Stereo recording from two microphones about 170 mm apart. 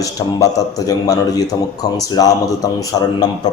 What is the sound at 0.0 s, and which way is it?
A man's voice, 20° left (ahead or behind).